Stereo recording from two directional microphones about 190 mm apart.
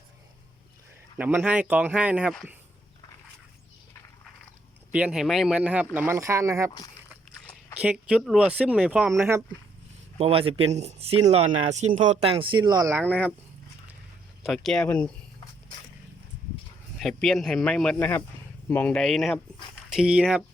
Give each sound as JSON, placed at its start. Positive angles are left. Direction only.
{"t": 1.2, "sound": "speech", "side_deg": -10}
{"t": 4.9, "sound": "speech", "side_deg": -5}
{"t": 7.8, "sound": "speech", "side_deg": -5}
{"t": 10.2, "sound": "speech", "side_deg": -30}
{"t": 14.4, "sound": "speech", "side_deg": 0}
{"t": 17.0, "sound": "speech", "side_deg": 0}